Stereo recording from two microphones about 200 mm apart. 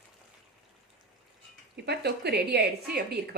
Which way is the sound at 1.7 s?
55° right (ahead or behind).